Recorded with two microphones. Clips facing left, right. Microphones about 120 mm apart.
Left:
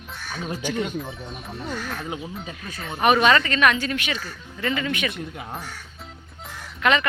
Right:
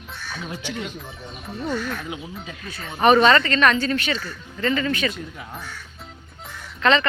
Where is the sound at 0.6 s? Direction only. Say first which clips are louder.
Left 8 dB; 45° left (ahead or behind).